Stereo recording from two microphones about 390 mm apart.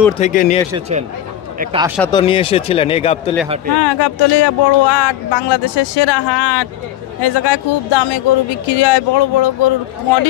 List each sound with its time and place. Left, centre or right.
0.2 s speech: centre
0.7 s speech: centre
2.0 s speech: centre
3.4 s speech: centre
3.7 s speech: left